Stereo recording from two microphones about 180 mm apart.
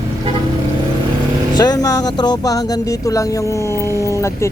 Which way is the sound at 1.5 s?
20° left (ahead or behind).